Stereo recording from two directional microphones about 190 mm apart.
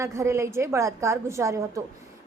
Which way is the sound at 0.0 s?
15° right (ahead or behind).